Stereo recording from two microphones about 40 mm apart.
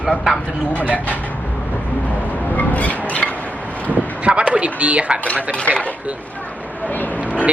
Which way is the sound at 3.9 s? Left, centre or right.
Right.